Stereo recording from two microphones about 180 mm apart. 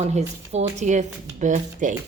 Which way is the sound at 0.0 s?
40° right (ahead or behind).